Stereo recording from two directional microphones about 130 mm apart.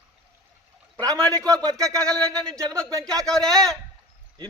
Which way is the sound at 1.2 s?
5° left (ahead or behind).